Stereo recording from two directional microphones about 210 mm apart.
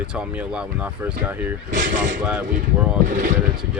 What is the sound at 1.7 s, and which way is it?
Speech, 35° right (ahead or behind).